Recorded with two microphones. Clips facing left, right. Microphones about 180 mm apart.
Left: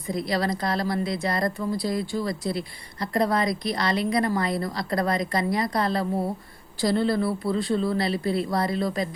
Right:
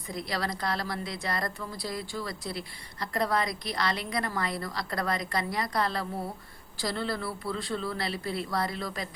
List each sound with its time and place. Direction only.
0.3 s a woman's voice: 30° left (ahead or behind)